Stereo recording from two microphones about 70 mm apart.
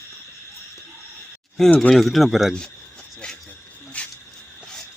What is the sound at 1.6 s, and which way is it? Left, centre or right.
Speech, left.